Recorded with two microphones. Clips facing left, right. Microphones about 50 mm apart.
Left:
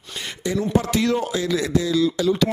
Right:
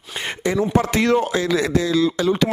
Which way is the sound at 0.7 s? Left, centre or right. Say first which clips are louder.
Right 2 dB; right.